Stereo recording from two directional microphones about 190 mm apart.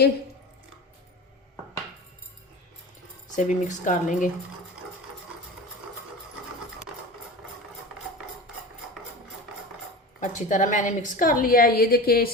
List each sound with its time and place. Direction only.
3.2 s speech: 40° left (ahead or behind)
10.2 s a woman's voice: 40° left (ahead or behind)